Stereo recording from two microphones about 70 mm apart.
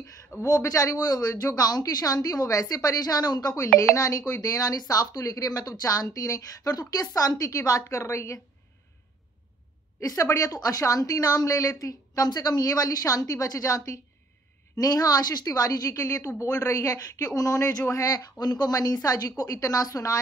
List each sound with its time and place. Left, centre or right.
0.5 s speech: left
0.9 s speech: left
3.9 s speech: left
9.9 s speech: left
14.8 s speech: left
18.4 s speech: left
19.0 s speech: left